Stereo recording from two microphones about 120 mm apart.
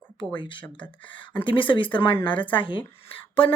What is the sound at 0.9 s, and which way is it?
Speech, 45° left (ahead or behind).